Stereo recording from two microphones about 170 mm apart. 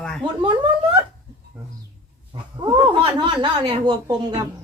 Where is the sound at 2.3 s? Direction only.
30° right (ahead or behind).